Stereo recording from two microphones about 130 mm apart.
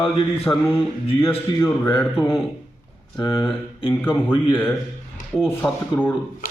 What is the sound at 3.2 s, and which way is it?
Speech, 40° left (ahead or behind).